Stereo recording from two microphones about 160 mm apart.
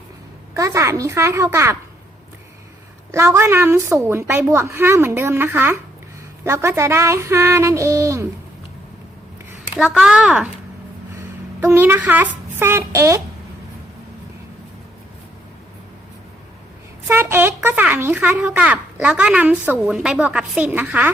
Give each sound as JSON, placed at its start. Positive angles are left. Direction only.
{"t": 0.5, "sound": "a child's voice", "side_deg": -20}
{"t": 3.1, "sound": "a child's voice", "side_deg": -15}
{"t": 9.7, "sound": "speech", "side_deg": -5}
{"t": 11.6, "sound": "a child's voice", "side_deg": -15}
{"t": 17.1, "sound": "a child's voice", "side_deg": -15}